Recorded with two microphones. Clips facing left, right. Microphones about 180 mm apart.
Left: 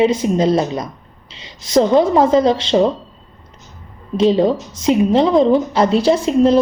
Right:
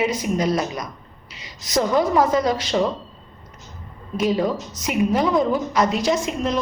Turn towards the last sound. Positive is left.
turn(degrees=30)  # may be behind; listen again after turning